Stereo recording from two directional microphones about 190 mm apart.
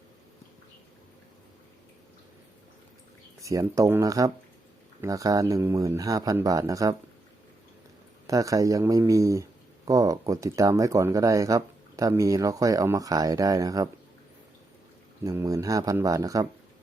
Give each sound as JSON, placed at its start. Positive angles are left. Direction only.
{"t": 3.4, "sound": "speech", "side_deg": -15}
{"t": 8.3, "sound": "speech", "side_deg": -15}
{"t": 15.2, "sound": "speech", "side_deg": -20}